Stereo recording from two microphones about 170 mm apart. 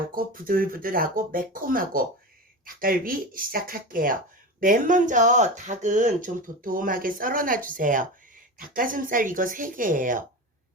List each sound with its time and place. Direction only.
0.1 s speech: 55° right (ahead or behind)